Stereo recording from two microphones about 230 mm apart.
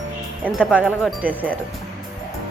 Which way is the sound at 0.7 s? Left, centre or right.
Centre.